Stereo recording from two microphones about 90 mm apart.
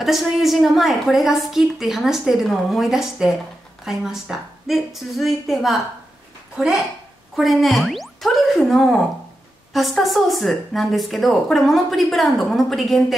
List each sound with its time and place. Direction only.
0.0 s speech: centre (ahead or behind)